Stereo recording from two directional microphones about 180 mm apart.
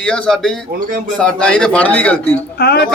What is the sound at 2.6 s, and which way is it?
Speech, 65° left (ahead or behind).